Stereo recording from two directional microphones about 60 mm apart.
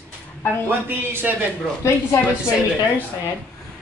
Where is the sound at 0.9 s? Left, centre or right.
Right.